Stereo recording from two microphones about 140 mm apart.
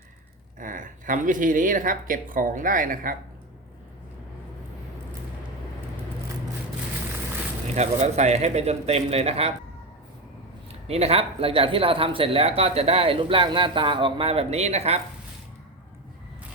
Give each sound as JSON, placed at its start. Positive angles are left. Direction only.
{"t": 0.6, "sound": "speech", "side_deg": -70}
{"t": 7.8, "sound": "speech", "side_deg": -55}
{"t": 10.8, "sound": "speech", "side_deg": -45}